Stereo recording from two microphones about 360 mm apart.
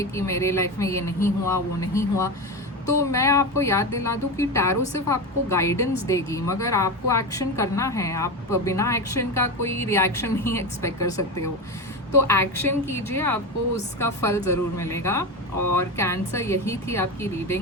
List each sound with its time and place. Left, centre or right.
0.0 s a woman's voice: centre
12.3 s a woman's voice: centre
15.5 s speech: right
16.0 s a woman's voice: centre